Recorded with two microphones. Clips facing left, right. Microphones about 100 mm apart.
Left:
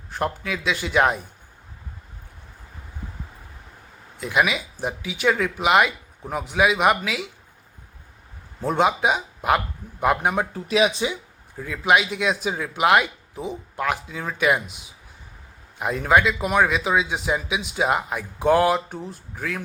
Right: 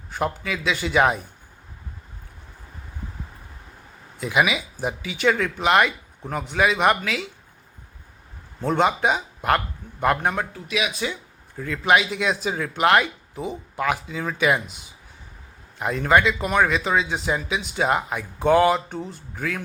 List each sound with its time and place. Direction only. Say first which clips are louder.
0.1 s speech: even; centre (ahead or behind)
4.2 s speech: even; centre (ahead or behind)
8.6 s a man's voice: even; 5° left (ahead or behind)
10.5 s speech: left 6 dB; 35° left (ahead or behind)
11.5 s speech: even; 5° left (ahead or behind)